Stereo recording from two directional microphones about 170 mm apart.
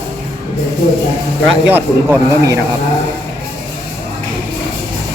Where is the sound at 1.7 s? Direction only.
10° right (ahead or behind).